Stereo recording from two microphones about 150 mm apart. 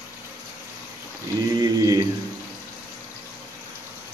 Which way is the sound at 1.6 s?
25° right (ahead or behind).